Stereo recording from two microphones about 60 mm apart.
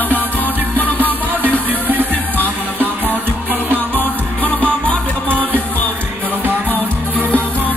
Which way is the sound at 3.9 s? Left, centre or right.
Left.